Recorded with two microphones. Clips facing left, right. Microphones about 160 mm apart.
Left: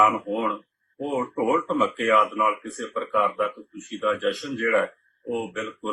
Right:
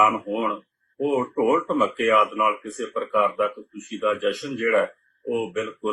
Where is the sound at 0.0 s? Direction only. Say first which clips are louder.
Even; 15° right (ahead or behind).